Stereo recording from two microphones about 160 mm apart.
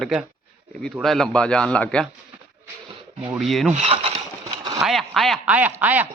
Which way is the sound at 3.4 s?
Centre (ahead or behind).